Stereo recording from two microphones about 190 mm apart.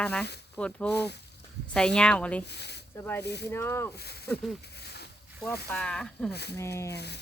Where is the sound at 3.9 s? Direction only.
60° left (ahead or behind).